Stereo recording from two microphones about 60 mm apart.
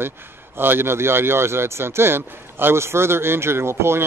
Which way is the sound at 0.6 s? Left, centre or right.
Right.